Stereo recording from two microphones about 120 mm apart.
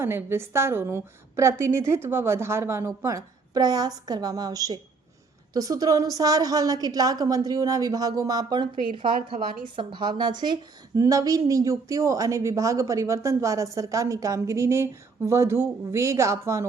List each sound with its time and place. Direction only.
0.0 s a woman's voice: 20° right (ahead or behind); by 8.7 s 35° right (ahead or behind)
9.3 s a woman's voice: 90° right
9.7 s a woman's voice: 40° right (ahead or behind); by 16.6 s 25° right (ahead or behind)